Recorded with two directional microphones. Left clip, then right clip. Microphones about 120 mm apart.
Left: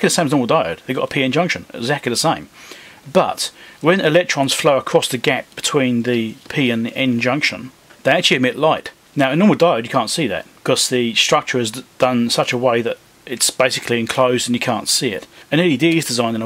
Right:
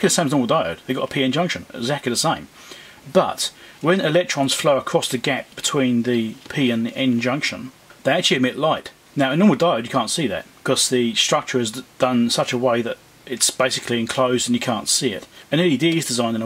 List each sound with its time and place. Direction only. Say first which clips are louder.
0.0 s speech: left 3 dB; 20° left (ahead or behind)